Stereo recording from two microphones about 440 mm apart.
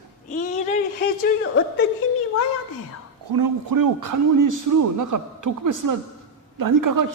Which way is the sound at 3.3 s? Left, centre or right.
Right.